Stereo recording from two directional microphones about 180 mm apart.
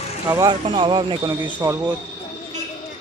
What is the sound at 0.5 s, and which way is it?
Speech, 25° right (ahead or behind).